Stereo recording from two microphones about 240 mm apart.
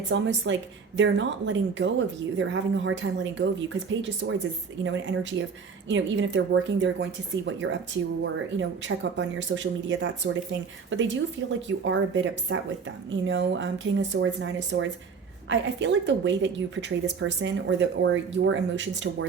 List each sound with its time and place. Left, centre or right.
0.1 s a woman's voice: right